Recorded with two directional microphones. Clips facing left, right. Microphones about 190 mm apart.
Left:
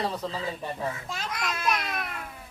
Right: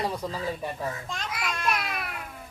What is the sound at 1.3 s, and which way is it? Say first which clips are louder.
Speech: left 1 dB; 5° right (ahead or behind).